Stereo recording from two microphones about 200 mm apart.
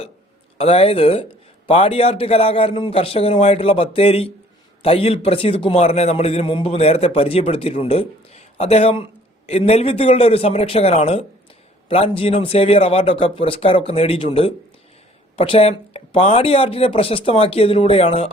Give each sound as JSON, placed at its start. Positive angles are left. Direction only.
{"t": 0.6, "sound": "a man's voice", "side_deg": 30}